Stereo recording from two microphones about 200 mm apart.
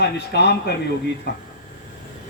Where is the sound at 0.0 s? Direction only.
55° left (ahead or behind).